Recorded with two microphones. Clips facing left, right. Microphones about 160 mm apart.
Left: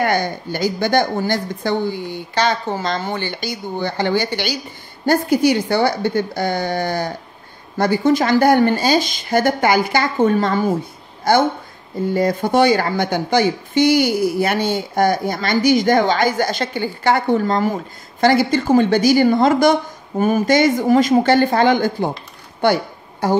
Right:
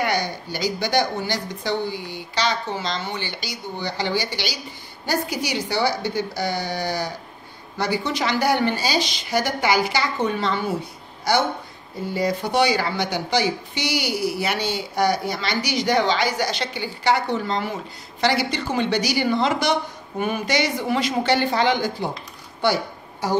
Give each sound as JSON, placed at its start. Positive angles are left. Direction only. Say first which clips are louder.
{"t": 0.0, "sound": "a woman's voice", "louder": "left 5 dB", "side_deg": 50}
{"t": 23.2, "sound": "a woman's voice", "louder": "left 5 dB", "side_deg": 55}